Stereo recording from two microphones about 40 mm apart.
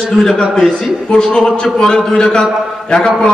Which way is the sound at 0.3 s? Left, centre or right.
Centre.